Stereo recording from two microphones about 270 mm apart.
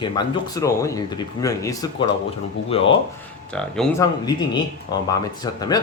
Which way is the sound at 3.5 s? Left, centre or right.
Centre.